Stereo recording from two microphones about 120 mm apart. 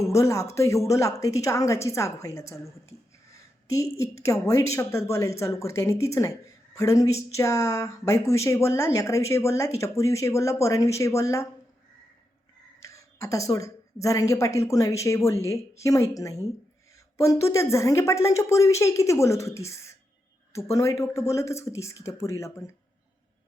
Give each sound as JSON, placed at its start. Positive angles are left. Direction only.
{"t": 0.1, "sound": "speech", "side_deg": 25}
{"t": 3.3, "sound": "a sound", "side_deg": 25}
{"t": 3.9, "sound": "speech", "side_deg": 25}
{"t": 12.8, "sound": "a woman's voice", "side_deg": 25}